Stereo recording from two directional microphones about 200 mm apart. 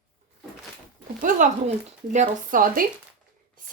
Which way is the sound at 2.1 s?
35° right (ahead or behind).